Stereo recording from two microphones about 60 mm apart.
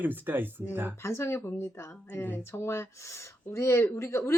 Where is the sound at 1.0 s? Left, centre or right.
Left.